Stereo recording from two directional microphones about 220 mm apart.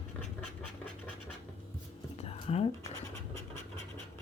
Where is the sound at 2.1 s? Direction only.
25° left (ahead or behind).